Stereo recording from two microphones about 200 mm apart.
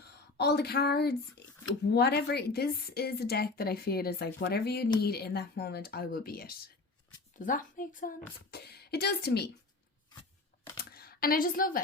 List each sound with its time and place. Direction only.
0.3 s a woman's voice: 55° left (ahead or behind)
8.4 s a woman's voice: 55° left (ahead or behind)
10.9 s a woman's voice: 50° left (ahead or behind)